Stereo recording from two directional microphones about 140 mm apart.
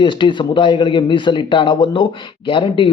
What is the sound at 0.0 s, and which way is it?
A man's voice, 35° left (ahead or behind).